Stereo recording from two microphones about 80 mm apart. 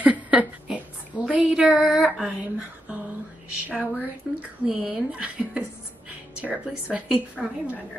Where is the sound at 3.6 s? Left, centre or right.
Centre.